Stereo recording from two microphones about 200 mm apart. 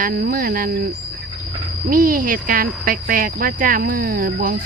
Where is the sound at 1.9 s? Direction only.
45° right (ahead or behind).